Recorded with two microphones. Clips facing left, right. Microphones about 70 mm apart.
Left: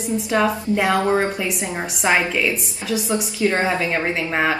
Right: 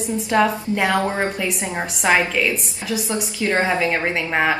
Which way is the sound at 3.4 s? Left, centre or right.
Right.